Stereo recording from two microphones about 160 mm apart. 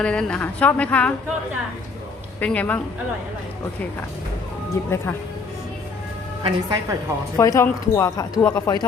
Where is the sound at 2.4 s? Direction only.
10° left (ahead or behind).